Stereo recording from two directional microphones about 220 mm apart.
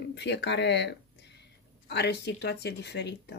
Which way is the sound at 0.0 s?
50° left (ahead or behind).